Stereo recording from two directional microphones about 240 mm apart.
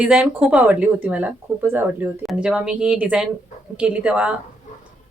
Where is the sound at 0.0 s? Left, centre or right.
Centre.